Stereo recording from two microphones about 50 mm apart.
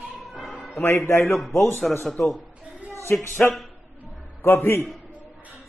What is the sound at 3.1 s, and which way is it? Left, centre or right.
Speech, left.